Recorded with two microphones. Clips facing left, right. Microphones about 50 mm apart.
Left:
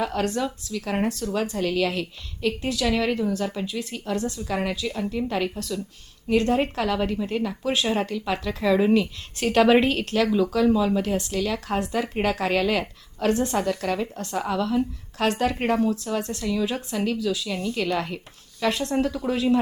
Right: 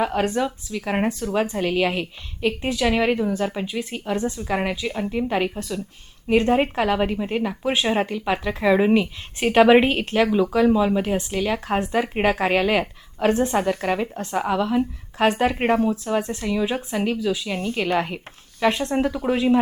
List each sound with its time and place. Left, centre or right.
0.0 s a woman's voice: right